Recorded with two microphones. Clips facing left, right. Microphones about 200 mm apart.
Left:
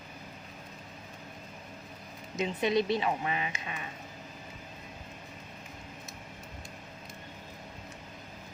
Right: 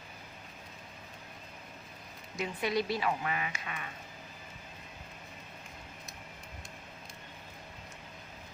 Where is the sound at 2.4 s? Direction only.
20° left (ahead or behind).